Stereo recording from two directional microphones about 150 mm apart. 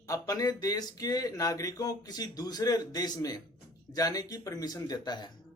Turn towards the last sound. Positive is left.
turn(degrees=30)  # may be behind; listen again after turning